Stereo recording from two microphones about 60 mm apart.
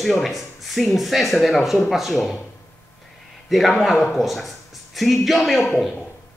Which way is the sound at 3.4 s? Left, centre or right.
Centre.